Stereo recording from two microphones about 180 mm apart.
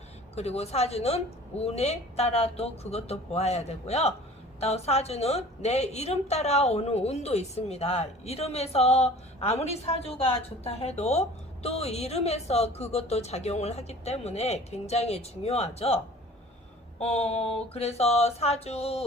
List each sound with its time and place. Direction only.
0.3 s a woman's voice: 35° left (ahead or behind)
17.0 s a woman's voice: 35° left (ahead or behind)